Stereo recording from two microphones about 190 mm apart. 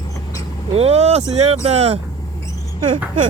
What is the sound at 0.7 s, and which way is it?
Speech, 35° right (ahead or behind).